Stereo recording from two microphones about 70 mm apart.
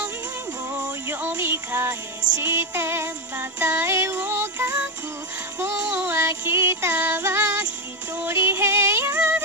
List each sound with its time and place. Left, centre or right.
1.0 s music: right
5.6 s child singing: right
7.0 s music: right